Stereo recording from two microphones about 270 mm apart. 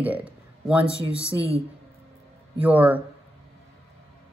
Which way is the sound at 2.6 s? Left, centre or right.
Centre.